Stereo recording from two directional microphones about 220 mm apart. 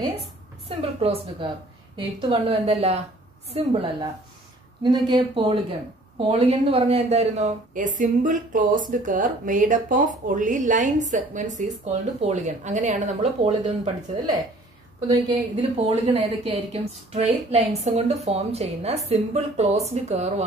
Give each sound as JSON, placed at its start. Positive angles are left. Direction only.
{"t": 0.0, "sound": "a woman's voice", "side_deg": -25}
{"t": 15.8, "sound": "a woman's voice", "side_deg": -25}